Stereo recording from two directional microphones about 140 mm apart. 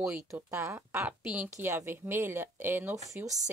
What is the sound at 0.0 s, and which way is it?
A woman's voice, 20° right (ahead or behind).